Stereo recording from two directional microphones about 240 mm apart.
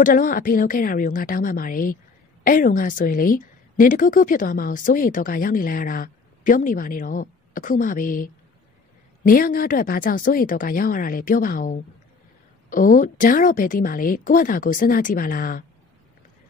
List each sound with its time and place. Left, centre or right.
0.0 s a woman's voice: left